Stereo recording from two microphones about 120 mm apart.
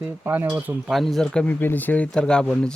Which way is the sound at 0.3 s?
20° right (ahead or behind).